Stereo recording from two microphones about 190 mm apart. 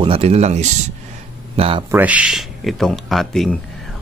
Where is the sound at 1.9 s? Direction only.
5° right (ahead or behind).